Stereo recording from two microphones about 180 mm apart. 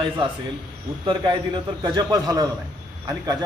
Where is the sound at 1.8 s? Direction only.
20° right (ahead or behind).